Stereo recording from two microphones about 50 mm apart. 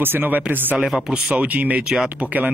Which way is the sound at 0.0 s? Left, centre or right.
Right.